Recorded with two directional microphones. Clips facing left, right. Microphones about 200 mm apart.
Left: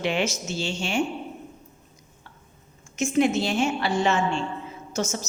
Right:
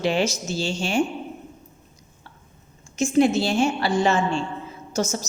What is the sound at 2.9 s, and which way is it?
A woman's voice, 35° right (ahead or behind).